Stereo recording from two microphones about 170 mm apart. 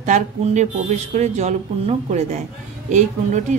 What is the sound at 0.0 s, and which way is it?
A woman's voice, 45° right (ahead or behind).